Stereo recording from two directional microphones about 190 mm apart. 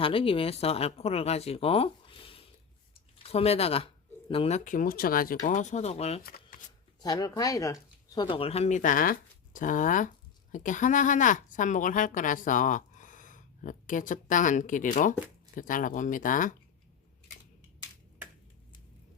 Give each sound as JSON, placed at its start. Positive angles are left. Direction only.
{"t": 0.0, "sound": "speech", "side_deg": 30}
{"t": 6.2, "sound": "shuffling cards", "side_deg": 50}
{"t": 7.0, "sound": "a woman's voice", "side_deg": 20}